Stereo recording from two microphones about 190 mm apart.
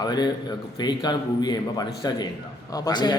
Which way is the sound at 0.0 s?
20° left (ahead or behind).